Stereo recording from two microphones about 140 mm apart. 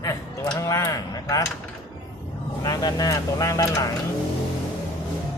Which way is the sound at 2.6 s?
30° left (ahead or behind).